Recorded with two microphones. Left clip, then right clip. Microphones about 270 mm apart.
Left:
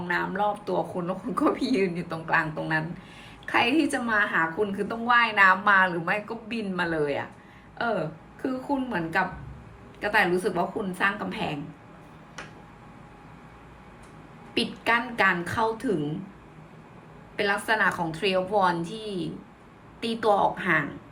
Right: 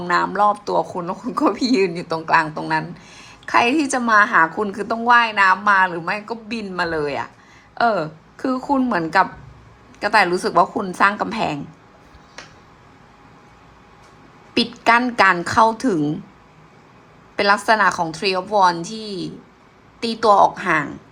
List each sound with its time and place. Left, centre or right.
0.0 s speech: centre
14.8 s speech: centre
17.3 s speech: centre